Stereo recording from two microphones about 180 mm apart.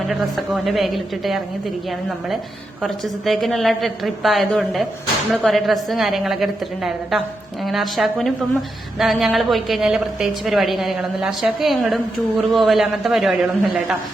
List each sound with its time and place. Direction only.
0.1 s a woman's voice: centre (ahead or behind)
2.8 s a woman's voice: centre (ahead or behind)